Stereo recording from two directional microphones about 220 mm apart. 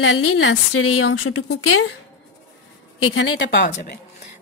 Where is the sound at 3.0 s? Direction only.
60° left (ahead or behind).